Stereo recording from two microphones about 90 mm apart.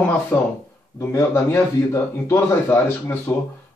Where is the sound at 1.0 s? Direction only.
30° left (ahead or behind).